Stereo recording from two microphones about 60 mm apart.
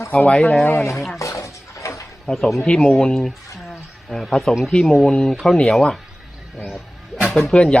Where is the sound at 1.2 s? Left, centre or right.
Left.